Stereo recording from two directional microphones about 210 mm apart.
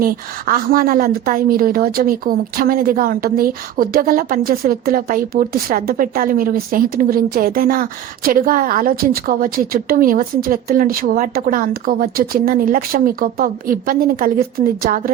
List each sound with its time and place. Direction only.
0.0 s a woman's voice: 45° right (ahead or behind)